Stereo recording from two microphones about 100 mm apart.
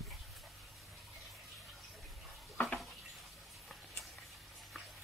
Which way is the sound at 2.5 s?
10° left (ahead or behind).